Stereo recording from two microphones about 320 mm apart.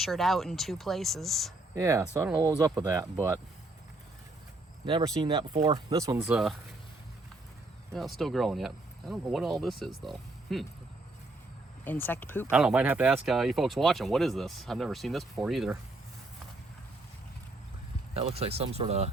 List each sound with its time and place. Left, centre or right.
0.0 s speech: centre
1.7 s speech: centre
4.9 s speech: centre
7.9 s speech: centre
11.9 s speech: centre
18.1 s speech: centre